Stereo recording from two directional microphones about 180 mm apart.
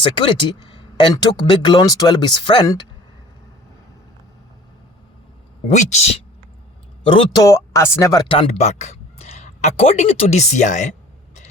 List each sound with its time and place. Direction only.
0.0 s speech: 25° left (ahead or behind)
5.6 s speech: 40° left (ahead or behind)
7.4 s speech: 15° left (ahead or behind)
8.3 s speech: 35° left (ahead or behind)